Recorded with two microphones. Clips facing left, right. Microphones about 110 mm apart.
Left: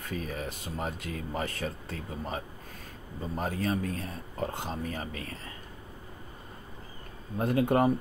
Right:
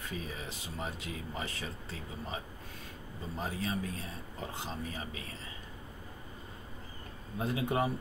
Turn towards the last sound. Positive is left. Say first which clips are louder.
# left 7 dB
turn(degrees=50)  # may be behind; listen again after turning